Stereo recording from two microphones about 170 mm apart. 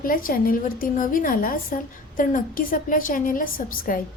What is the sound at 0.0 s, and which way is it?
A woman's voice, 55° left (ahead or behind).